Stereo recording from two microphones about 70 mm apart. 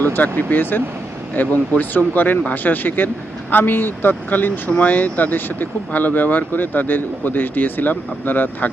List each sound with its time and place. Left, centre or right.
0.0 s speech: left